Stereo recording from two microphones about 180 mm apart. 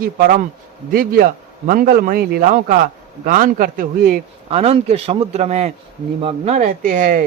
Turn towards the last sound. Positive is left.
turn(degrees=-50)  # may be behind; listen again after turning